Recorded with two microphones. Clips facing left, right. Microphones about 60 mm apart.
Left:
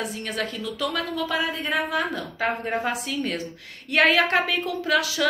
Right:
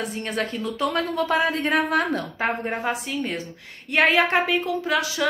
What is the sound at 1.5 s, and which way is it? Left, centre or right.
Speech, right.